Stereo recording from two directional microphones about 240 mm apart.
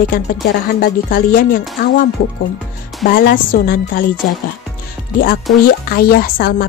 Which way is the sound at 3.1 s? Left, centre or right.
Left.